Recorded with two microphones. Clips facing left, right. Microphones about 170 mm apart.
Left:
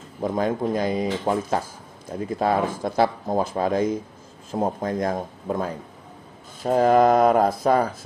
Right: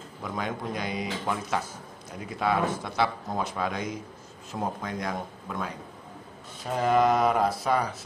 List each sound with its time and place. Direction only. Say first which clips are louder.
0.2 s speech: left 10 dB; 40° left (ahead or behind)
4.8 s speech: left 8 dB; 45° left (ahead or behind)